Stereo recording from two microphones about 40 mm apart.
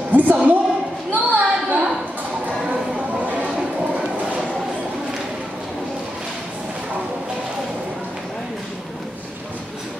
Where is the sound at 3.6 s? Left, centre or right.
Right.